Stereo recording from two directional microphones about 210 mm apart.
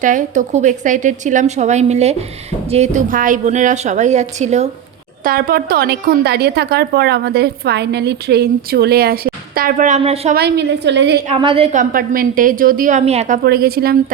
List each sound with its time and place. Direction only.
0.0 s a woman's voice: 35° right (ahead or behind)
5.2 s a woman's voice: 45° right (ahead or behind)
10.3 s a woman's voice: 50° right (ahead or behind)
11.3 s a woman's voice: 25° right (ahead or behind)
11.8 s a woman's voice: 40° right (ahead or behind)